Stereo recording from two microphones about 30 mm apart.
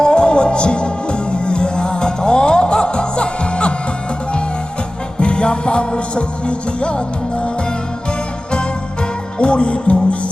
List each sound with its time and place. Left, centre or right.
0.0 s music: left
5.2 s music: left
9.4 s music: left